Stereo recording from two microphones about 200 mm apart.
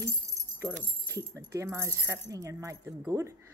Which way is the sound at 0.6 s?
15° right (ahead or behind).